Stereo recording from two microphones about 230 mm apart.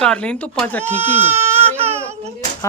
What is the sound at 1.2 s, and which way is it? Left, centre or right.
Baby cry, centre.